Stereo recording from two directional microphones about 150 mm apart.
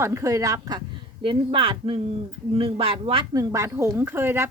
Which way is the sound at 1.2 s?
35° right (ahead or behind).